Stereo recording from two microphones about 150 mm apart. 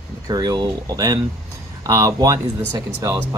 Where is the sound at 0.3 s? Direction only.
25° right (ahead or behind).